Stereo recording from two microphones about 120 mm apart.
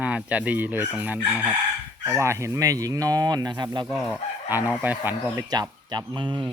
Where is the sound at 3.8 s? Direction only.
Centre (ahead or behind).